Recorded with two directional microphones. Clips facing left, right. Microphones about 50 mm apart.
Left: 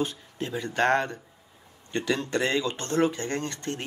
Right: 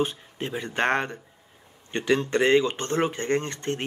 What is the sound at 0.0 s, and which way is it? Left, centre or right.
Speech, right.